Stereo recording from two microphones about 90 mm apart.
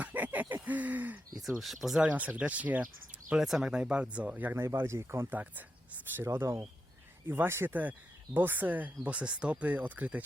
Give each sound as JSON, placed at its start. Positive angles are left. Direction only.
{"t": 0.0, "sound": "a sound", "side_deg": -20}
{"t": 1.4, "sound": "speech", "side_deg": 0}
{"t": 2.0, "sound": "speech", "side_deg": -15}
{"t": 3.1, "sound": "bird", "side_deg": -15}
{"t": 3.4, "sound": "speech", "side_deg": -5}
{"t": 4.6, "sound": "speech", "side_deg": -30}